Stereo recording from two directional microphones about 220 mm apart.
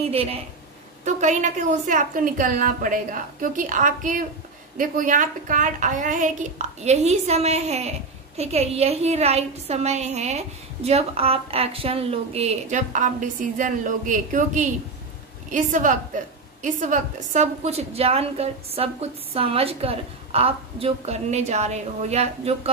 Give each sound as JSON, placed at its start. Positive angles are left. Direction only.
{"t": 0.1, "sound": "a woman's voice", "side_deg": -25}